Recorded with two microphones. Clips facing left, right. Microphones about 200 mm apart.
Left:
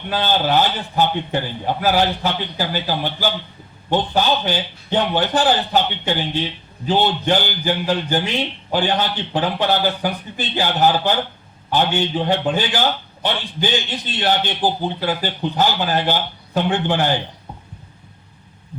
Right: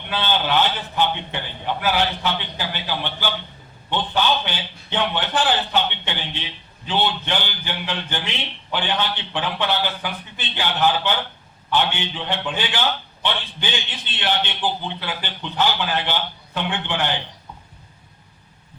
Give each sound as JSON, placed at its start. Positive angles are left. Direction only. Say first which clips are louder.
{"t": 0.1, "sound": "a man's voice", "louder": "left 4 dB", "side_deg": 40}